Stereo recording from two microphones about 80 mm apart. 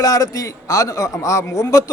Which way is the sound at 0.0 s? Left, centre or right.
Left.